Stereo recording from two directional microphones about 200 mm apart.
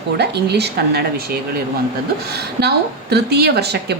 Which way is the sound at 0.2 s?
55° right (ahead or behind).